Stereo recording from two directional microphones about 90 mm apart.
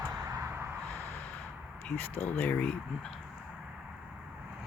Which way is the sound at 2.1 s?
25° left (ahead or behind).